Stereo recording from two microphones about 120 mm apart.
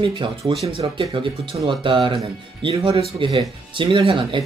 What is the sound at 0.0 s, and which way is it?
Speech, 45° right (ahead or behind).